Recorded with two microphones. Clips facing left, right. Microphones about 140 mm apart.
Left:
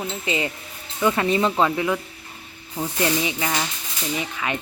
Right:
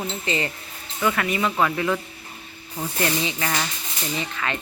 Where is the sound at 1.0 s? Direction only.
25° left (ahead or behind).